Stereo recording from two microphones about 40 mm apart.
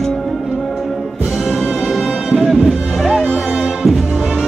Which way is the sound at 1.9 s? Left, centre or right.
Centre.